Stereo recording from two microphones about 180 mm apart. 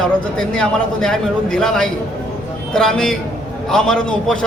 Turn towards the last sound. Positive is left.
turn(degrees=5)  # may be behind; listen again after turning